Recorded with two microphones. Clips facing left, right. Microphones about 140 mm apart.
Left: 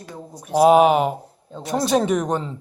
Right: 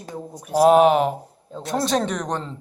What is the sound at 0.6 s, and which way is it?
A man's voice, 5° left (ahead or behind).